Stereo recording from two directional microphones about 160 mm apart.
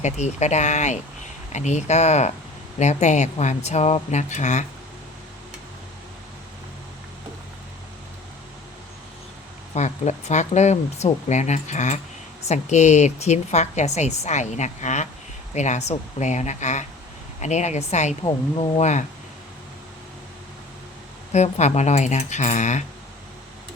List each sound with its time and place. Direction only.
0.0 s a woman's voice: 45° left (ahead or behind)
9.7 s a woman's voice: 45° left (ahead or behind)
18.2 s speech: 35° left (ahead or behind)
21.3 s a woman's voice: 45° left (ahead or behind)